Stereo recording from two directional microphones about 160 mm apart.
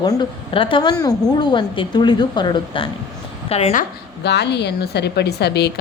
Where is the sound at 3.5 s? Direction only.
40° left (ahead or behind).